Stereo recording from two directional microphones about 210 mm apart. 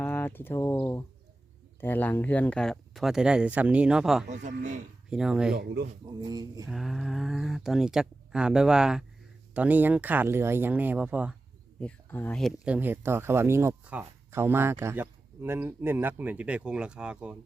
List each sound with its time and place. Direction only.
0.0 s speech: 10° left (ahead or behind)
4.3 s speech: 35° right (ahead or behind)
5.0 s speech: 5° right (ahead or behind)
5.5 s speech: 50° right (ahead or behind)
6.1 s speech: 20° right (ahead or behind)
6.7 s speech: centre (ahead or behind)
11.8 s speech: 5° left (ahead or behind)